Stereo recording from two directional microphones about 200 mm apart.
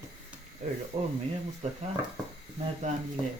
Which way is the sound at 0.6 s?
35° right (ahead or behind).